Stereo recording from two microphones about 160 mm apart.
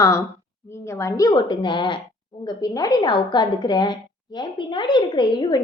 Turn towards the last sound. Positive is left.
turn(degrees=30)  # may be behind; listen again after turning